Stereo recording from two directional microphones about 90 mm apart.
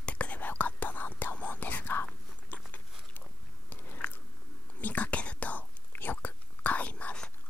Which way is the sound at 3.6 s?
20° left (ahead or behind).